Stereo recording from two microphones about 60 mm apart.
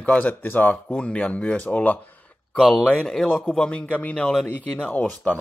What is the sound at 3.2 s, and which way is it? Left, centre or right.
Speech, left.